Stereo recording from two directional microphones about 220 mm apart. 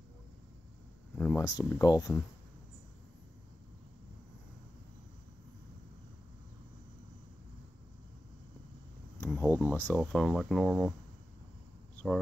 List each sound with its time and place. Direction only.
1.1 s speech: 10° left (ahead or behind)
9.3 s speech: 10° left (ahead or behind)